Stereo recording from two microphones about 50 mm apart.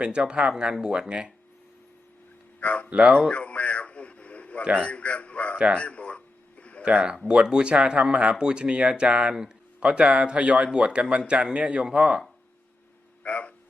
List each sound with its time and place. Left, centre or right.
0.0 s speech: centre
2.6 s speech: left
2.9 s speech: right
3.2 s radio: left
4.8 s a man's voice: left
5.7 s a sound: left
6.8 s speech: right
13.2 s a sound: left